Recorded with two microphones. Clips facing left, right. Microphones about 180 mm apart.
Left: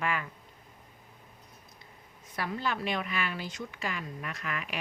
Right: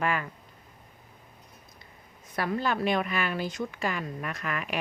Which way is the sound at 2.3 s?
50° right (ahead or behind).